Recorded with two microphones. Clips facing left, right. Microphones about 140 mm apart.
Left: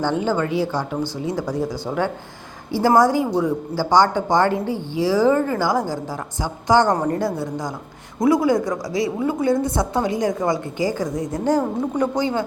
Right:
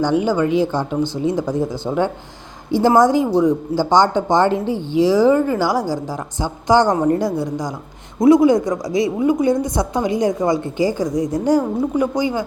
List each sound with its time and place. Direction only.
0.0 s a woman's voice: 15° right (ahead or behind)